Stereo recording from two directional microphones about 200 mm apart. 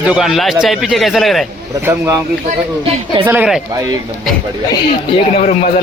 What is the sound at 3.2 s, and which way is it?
Speech, 10° right (ahead or behind).